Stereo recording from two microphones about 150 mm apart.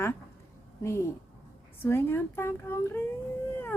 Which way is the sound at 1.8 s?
15° left (ahead or behind).